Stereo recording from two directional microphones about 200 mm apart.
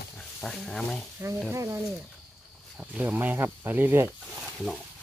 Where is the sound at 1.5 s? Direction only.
15° right (ahead or behind).